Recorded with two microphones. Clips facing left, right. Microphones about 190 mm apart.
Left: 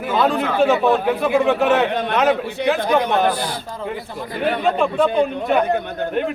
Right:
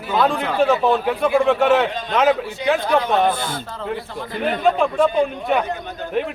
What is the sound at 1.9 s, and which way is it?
Speech, 60° left (ahead or behind).